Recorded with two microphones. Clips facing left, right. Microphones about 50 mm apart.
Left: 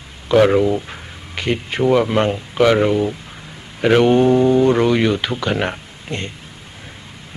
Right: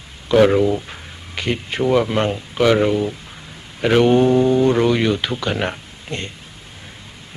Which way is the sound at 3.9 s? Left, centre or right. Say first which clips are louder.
Left 1 dB; left.